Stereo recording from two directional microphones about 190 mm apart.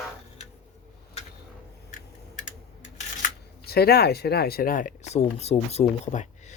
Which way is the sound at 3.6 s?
55° left (ahead or behind).